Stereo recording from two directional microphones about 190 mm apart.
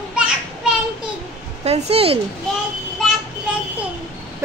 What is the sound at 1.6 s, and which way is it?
Speech, 35° right (ahead or behind).